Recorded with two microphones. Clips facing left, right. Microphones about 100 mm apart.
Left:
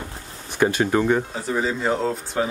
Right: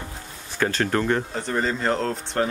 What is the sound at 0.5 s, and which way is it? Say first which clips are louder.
Speech: left 4 dB; 15° left (ahead or behind).